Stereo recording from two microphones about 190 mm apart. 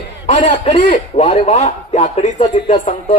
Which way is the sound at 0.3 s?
35° left (ahead or behind).